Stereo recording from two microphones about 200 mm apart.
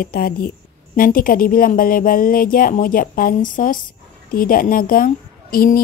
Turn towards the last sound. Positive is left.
turn(degrees=45)  # may be behind; listen again after turning